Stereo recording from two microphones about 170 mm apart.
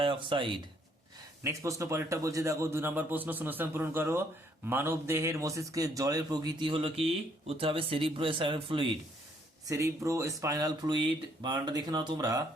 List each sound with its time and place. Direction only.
0.0 s speech: 30° right (ahead or behind)
1.5 s a man's voice: 20° right (ahead or behind)
9.6 s a man's voice: 20° right (ahead or behind)